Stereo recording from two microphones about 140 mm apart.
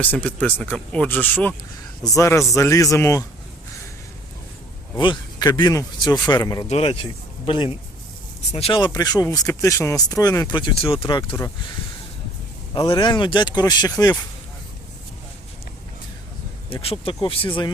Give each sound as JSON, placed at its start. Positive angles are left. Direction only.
{"t": 0.0, "sound": "speech", "side_deg": 10}
{"t": 4.9, "sound": "speech", "side_deg": 35}
{"t": 6.7, "sound": "speech", "side_deg": 45}
{"t": 12.9, "sound": "speech", "side_deg": 35}
{"t": 16.6, "sound": "speech", "side_deg": 45}